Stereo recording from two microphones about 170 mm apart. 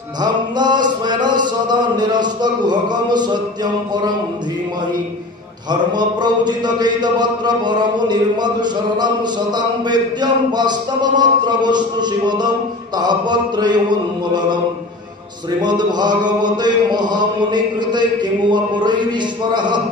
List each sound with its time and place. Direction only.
0.2 s a sound: 25° right (ahead or behind)
5.7 s mantra: 25° right (ahead or behind)
15.6 s mantra: 25° right (ahead or behind)